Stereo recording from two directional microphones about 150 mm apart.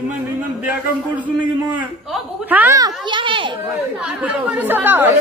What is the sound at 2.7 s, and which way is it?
Speech, 30° right (ahead or behind).